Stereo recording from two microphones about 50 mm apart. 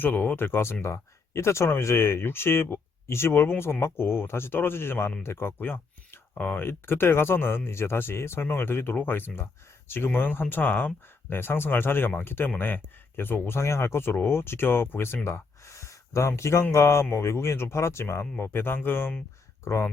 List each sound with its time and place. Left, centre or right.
0.0 s speech: left
6.3 s speech: left
6.7 s speech: left
13.6 s speech: left
15.3 s speech: left
19.6 s speech: left